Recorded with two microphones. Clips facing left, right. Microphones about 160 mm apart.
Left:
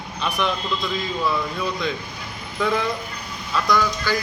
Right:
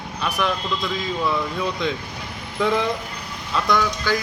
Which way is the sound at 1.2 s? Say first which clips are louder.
Right 1 dB; 20° right (ahead or behind).